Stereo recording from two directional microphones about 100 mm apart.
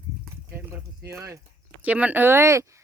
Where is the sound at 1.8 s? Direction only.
15° right (ahead or behind); by 2.8 s 30° right (ahead or behind).